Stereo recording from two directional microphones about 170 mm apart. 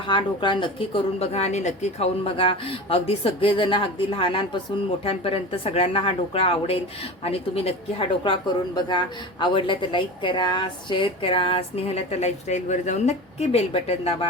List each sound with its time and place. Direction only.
0.1 s speech: 30° left (ahead or behind)